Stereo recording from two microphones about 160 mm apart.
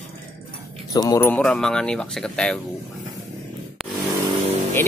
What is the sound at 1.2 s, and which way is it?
Speech, 5° left (ahead or behind).